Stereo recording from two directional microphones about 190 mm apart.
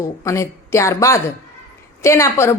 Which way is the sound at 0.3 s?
15° left (ahead or behind).